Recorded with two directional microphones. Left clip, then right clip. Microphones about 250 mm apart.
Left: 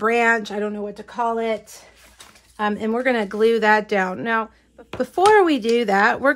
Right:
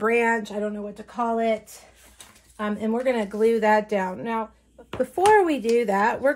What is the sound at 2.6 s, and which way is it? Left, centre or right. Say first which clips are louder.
Speech: left 5 dB; left.